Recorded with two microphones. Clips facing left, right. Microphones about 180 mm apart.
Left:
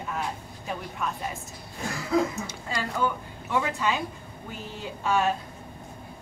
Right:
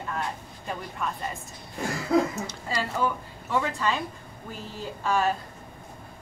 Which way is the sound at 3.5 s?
5° left (ahead or behind).